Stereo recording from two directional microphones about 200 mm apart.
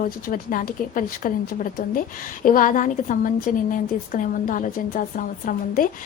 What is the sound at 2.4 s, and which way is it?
A woman's voice, 40° left (ahead or behind).